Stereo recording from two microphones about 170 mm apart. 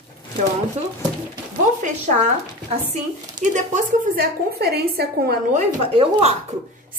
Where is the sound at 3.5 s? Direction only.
50° right (ahead or behind).